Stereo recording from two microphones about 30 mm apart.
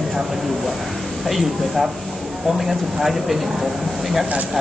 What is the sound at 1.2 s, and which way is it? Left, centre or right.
Speech, centre.